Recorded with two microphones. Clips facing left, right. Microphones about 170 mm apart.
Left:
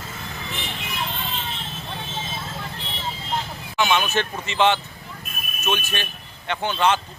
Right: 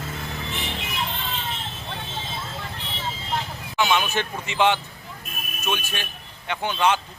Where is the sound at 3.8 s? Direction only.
15° right (ahead or behind).